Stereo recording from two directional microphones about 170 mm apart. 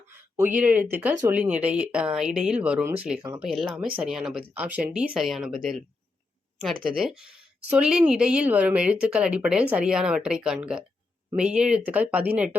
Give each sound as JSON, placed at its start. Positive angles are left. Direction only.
{"t": 0.3, "sound": "a woman's voice", "side_deg": -10}